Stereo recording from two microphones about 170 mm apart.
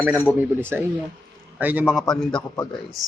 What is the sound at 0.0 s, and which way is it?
A man's voice, 10° right (ahead or behind).